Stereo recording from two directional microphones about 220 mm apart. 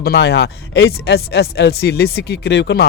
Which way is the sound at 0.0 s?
45° left (ahead or behind).